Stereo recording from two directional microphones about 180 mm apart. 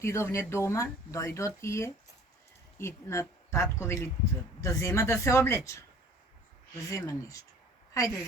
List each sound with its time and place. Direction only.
0.0 s speech: 15° left (ahead or behind)
6.9 s speech: 20° left (ahead or behind)